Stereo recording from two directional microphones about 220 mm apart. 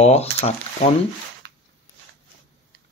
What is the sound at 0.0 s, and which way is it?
Speech, 30° left (ahead or behind).